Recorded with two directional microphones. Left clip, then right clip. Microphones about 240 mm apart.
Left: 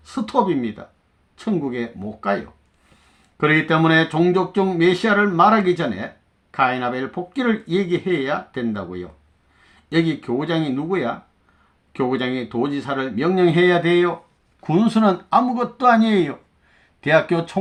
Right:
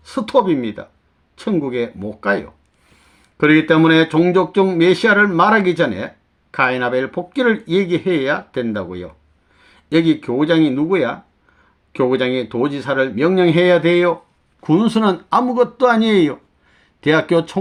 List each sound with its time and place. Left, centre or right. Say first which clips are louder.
0.0 s speech: right 4 dB; right